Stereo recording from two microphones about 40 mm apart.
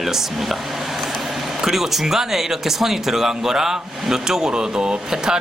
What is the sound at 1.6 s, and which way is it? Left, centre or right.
Speech, centre.